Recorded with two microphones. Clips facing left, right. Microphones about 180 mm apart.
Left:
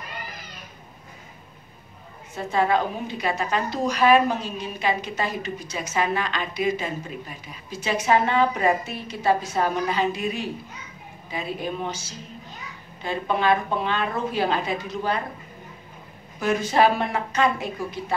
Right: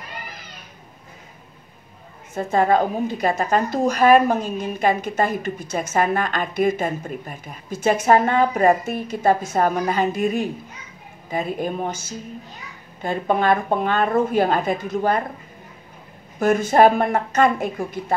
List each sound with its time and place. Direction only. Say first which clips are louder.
2.3 s a woman's voice: right 4 dB; 45° right (ahead or behind)
16.3 s a woman's voice: right 5 dB; 50° right (ahead or behind)